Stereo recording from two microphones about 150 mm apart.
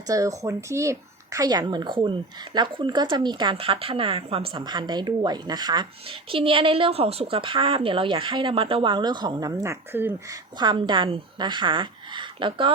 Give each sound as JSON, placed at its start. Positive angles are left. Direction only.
{"t": 0.1, "sound": "speech", "side_deg": -20}
{"t": 10.6, "sound": "speech", "side_deg": -30}